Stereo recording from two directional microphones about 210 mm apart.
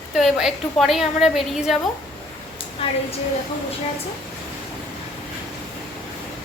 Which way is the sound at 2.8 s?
25° left (ahead or behind).